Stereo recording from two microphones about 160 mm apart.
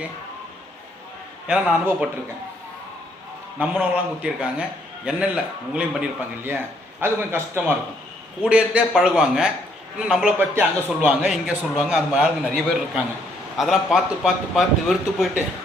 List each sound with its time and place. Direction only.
1.5 s a man's voice: 5° right (ahead or behind)
3.6 s a man's voice: 10° right (ahead or behind)
13.6 s a man's voice: centre (ahead or behind)